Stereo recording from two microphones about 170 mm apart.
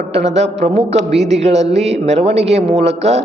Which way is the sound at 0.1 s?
40° right (ahead or behind).